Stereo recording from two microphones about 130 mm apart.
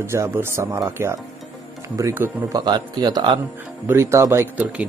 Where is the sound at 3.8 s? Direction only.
20° right (ahead or behind).